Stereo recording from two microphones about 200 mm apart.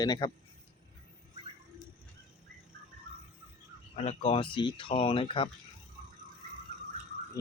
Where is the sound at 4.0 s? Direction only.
30° left (ahead or behind).